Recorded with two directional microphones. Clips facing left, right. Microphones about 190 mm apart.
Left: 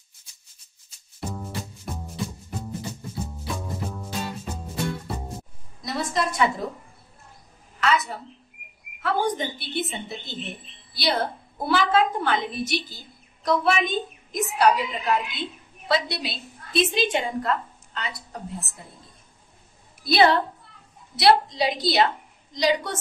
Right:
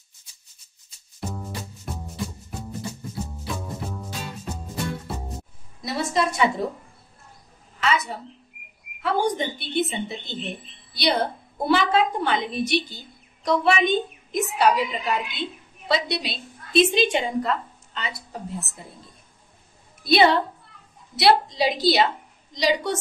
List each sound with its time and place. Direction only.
1.2 s music: centre (ahead or behind)
3.3 s music: centre (ahead or behind)
5.8 s a sound: centre (ahead or behind)
7.8 s a sound: centre (ahead or behind)
9.0 s a woman's voice: centre (ahead or behind)
20.0 s a woman's voice: centre (ahead or behind)